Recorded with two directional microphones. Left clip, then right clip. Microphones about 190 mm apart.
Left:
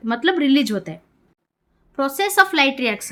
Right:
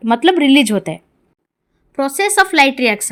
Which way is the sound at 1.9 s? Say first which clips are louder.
Right 3 dB; 20° right (ahead or behind).